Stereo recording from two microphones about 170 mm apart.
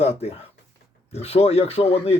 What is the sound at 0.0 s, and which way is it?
Speech, 40° left (ahead or behind).